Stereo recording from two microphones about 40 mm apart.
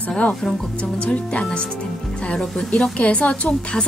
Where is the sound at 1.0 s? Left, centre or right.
Left.